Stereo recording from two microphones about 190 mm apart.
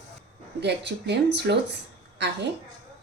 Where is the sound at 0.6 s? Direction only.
60° right (ahead or behind).